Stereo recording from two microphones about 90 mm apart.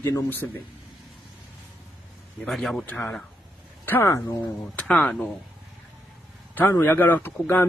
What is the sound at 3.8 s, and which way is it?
Speech, 25° left (ahead or behind).